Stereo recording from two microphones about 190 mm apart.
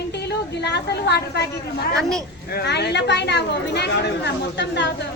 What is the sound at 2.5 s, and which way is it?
Speech, 60° left (ahead or behind).